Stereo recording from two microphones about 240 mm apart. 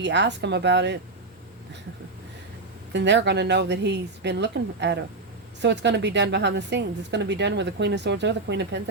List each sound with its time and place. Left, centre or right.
0.0 s a woman's voice: right
2.9 s a woman's voice: right